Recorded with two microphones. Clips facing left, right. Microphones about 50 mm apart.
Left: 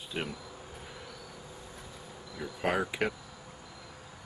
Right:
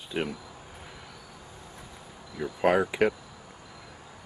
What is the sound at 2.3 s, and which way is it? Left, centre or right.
Speech, centre.